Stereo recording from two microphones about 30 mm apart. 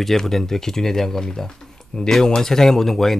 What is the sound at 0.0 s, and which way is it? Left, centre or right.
Speech, centre.